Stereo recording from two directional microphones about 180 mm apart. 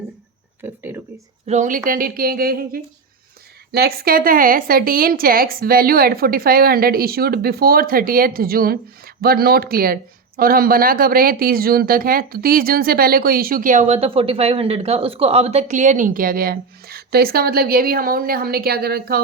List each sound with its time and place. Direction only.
0.6 s speech: 10° right (ahead or behind)
1.5 s speech: 45° right (ahead or behind); by 19.2 s 60° right (ahead or behind)